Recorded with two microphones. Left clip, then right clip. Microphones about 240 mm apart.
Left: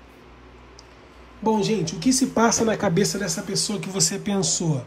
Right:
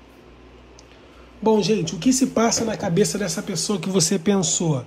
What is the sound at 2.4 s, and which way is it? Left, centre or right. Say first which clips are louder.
Speech: left 2 dB; left.